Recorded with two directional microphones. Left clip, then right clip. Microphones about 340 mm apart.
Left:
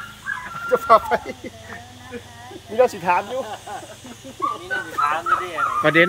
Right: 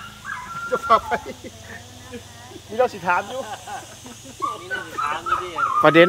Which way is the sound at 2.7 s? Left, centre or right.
Left.